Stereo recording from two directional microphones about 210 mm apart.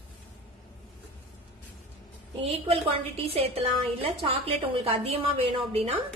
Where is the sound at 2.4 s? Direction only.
25° right (ahead or behind).